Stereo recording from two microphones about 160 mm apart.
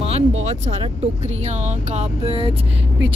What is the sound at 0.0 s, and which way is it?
Speech, 40° right (ahead or behind).